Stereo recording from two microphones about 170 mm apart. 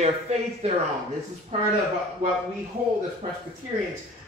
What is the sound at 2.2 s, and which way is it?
Speech, 45° right (ahead or behind).